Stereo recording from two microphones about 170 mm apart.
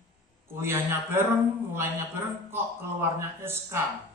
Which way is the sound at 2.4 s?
15° right (ahead or behind).